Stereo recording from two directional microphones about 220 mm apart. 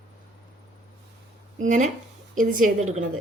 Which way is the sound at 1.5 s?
35° right (ahead or behind).